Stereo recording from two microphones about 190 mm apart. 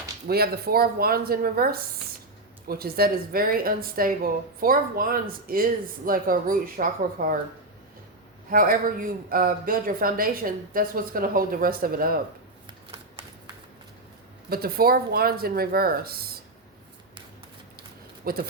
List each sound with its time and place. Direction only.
0.3 s a man's voice: 55° right (ahead or behind)
8.4 s a man's voice: 50° right (ahead or behind)
12.6 s shuffling cards: 30° right (ahead or behind)
14.5 s a man's voice: 50° right (ahead or behind)
18.3 s a man's voice: 50° right (ahead or behind)